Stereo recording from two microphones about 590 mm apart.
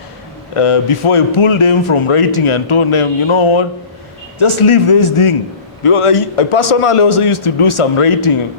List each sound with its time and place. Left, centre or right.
0.5 s a man's voice: left